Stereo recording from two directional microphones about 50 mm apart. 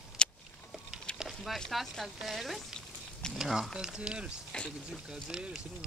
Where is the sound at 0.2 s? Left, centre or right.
Centre.